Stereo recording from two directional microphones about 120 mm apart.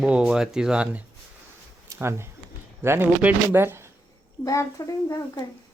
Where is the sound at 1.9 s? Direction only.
20° right (ahead or behind).